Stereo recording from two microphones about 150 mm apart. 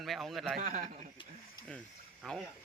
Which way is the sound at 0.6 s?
65° right (ahead or behind).